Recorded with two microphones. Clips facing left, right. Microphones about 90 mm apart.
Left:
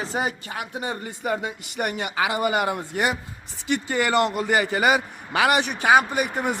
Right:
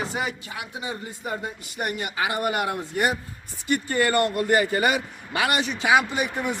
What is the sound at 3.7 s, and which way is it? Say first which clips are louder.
A man's voice: even; 90° left.